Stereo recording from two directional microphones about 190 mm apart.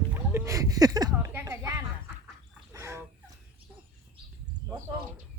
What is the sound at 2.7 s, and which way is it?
Turkey, 15° right (ahead or behind).